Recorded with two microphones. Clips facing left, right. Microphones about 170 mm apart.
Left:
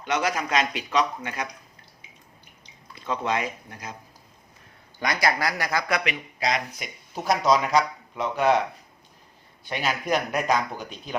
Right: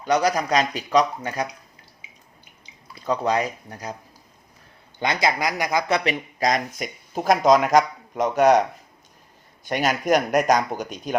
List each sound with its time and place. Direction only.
0.0 s speech: 35° right (ahead or behind)
2.9 s speech: 35° right (ahead or behind)
4.9 s speech: 25° right (ahead or behind)
6.1 s speech: 45° right (ahead or behind)
9.6 s speech: 45° right (ahead or behind)